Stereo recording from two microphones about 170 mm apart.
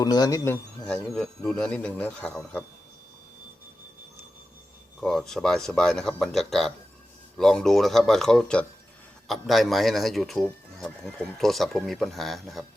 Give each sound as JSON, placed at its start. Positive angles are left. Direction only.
{"t": 0.0, "sound": "a man's voice", "side_deg": 20}
{"t": 1.1, "sound": "a man's voice", "side_deg": 5}
{"t": 4.9, "sound": "speech", "side_deg": 0}